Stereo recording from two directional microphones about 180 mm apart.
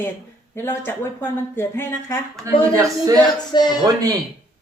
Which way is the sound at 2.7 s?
20° right (ahead or behind).